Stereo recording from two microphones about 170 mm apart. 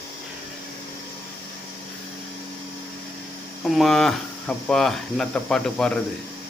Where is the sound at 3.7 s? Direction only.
Centre (ahead or behind).